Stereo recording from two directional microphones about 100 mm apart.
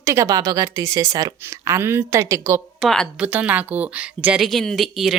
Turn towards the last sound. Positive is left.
turn(degrees=0)  # may be behind; listen again after turning